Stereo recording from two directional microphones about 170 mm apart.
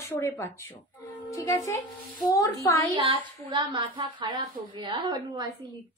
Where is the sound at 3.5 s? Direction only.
30° right (ahead or behind).